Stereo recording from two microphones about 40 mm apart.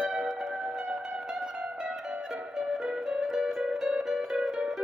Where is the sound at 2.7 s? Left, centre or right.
Centre.